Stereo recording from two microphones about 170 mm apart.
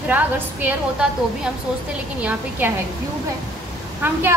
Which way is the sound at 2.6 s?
10° right (ahead or behind).